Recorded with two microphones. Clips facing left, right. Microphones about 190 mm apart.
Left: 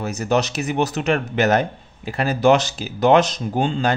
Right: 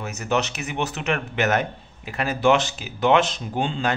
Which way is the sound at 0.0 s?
35° left (ahead or behind).